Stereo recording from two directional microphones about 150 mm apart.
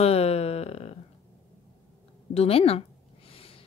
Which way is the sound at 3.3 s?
40° left (ahead or behind).